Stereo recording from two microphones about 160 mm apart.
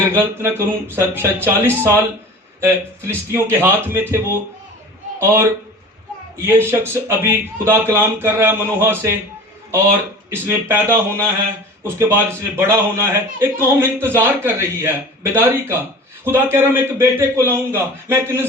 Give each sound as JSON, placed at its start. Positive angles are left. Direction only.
{"t": 0.1, "sound": "a man's voice", "side_deg": -15}
{"t": 10.4, "sound": "a man's voice", "side_deg": -15}